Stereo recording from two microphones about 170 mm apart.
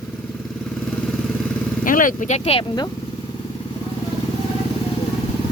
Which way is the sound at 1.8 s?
55° left (ahead or behind).